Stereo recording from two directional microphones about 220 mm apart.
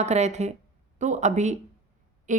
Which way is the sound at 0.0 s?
30° right (ahead or behind).